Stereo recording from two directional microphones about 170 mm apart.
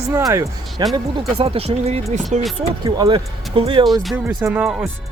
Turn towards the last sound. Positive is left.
turn(degrees=-10)  # may be behind; listen again after turning